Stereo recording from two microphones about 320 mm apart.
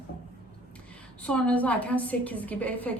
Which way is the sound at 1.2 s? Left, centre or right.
Centre.